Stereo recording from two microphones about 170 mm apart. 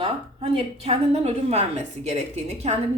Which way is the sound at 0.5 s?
35° right (ahead or behind).